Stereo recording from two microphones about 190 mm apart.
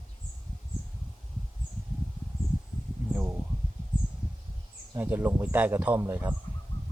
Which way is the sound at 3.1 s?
10° right (ahead or behind).